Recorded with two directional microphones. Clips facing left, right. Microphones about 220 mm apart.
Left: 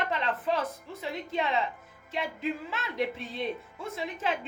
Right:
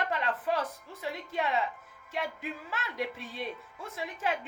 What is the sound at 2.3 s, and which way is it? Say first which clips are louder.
Speech: left 6 dB; 20° left (ahead or behind).